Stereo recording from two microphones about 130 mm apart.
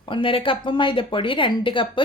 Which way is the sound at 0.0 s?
40° left (ahead or behind).